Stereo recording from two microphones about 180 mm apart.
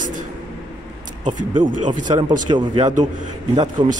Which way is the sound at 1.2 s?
45° right (ahead or behind).